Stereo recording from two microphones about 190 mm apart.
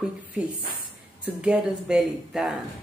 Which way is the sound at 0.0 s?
5° right (ahead or behind).